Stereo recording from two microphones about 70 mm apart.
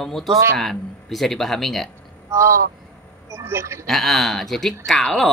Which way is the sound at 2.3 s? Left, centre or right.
Right.